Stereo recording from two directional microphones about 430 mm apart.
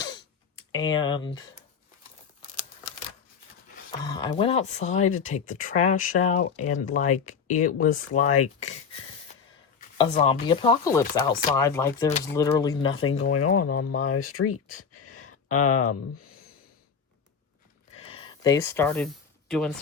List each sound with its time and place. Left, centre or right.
0.7 s speech: centre
4.0 s speech: centre
10.0 s speech: centre
13.3 s speech: left
14.9 s a sound: left
17.9 s a sound: centre
19.5 s speech: centre